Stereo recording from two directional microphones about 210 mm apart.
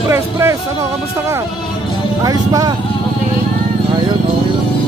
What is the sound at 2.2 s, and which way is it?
Speech, 15° right (ahead or behind).